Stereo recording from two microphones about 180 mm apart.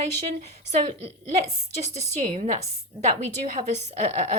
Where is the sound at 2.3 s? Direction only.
45° right (ahead or behind).